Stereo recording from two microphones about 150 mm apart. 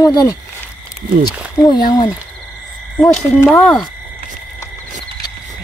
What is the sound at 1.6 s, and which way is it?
Speech, 30° left (ahead or behind).